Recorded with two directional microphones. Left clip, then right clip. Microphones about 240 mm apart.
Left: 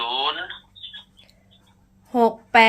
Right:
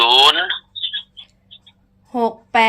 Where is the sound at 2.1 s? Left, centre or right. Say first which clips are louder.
Left 1 dB; centre.